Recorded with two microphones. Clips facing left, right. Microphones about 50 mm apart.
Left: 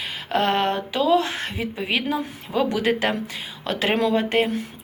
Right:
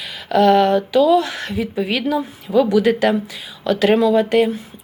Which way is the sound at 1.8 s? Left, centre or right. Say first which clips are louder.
Right 4 dB; centre.